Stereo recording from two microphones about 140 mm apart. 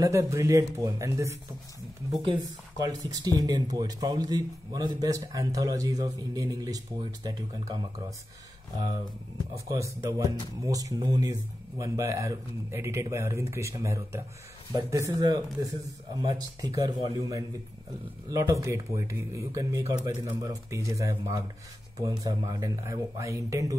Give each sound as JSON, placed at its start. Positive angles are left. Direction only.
{"t": 0.0, "sound": "speech", "side_deg": -20}
{"t": 9.8, "sound": "speech", "side_deg": -20}
{"t": 18.3, "sound": "speech", "side_deg": -20}